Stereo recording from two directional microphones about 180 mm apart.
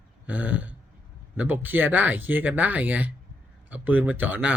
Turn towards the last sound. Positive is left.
turn(degrees=-10)  # may be behind; listen again after turning